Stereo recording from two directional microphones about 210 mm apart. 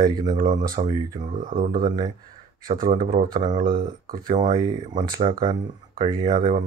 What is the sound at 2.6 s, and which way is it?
Speech, 45° right (ahead or behind).